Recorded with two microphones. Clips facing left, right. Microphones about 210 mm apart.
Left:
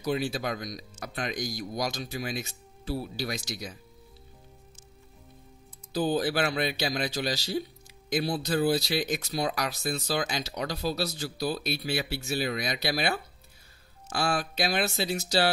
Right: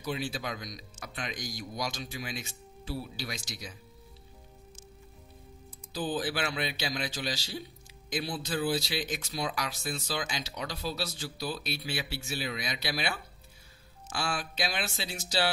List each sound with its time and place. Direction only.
0.0 s speech: 40° left (ahead or behind)
5.9 s speech: 40° left (ahead or behind)